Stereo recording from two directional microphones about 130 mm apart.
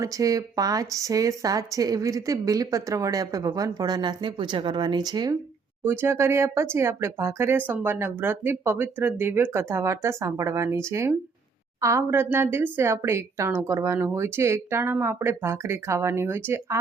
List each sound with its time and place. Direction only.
0.0 s speech: 25° right (ahead or behind)
5.8 s speech: 20° right (ahead or behind)